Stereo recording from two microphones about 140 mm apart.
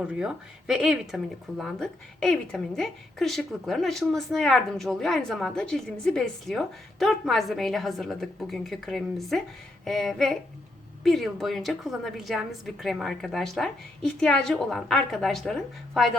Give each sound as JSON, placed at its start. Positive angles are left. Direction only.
{"t": 0.0, "sound": "speech", "side_deg": -5}